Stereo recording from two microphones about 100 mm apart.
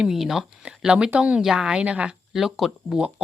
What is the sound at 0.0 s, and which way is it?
Speech, 5° right (ahead or behind).